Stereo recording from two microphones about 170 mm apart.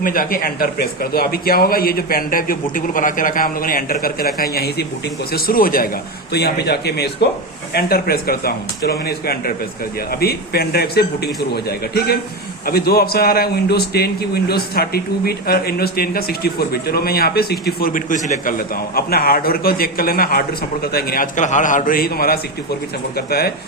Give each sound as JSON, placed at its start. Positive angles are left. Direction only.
{"t": 0.0, "sound": "a man's voice", "side_deg": 55}